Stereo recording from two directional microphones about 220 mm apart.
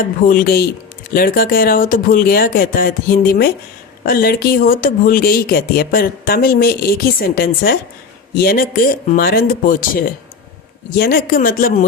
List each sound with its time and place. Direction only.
0.0 s speech: 40° left (ahead or behind)